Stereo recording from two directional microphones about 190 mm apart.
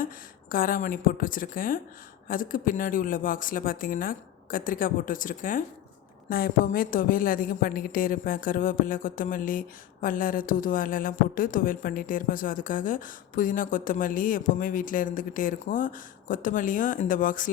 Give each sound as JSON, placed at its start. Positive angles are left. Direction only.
{"t": 0.5, "sound": "a woman's voice", "side_deg": 45}